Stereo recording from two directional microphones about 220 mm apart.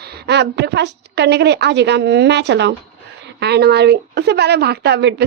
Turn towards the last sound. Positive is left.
turn(degrees=-50)  # may be behind; listen again after turning